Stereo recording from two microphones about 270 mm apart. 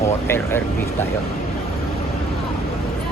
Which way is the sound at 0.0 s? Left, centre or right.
Centre.